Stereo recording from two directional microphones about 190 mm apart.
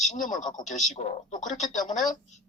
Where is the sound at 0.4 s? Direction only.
40° left (ahead or behind).